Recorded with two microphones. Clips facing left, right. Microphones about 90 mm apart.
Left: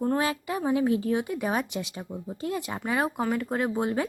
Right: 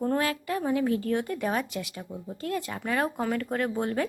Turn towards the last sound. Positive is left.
turn(degrees=15)  # may be behind; listen again after turning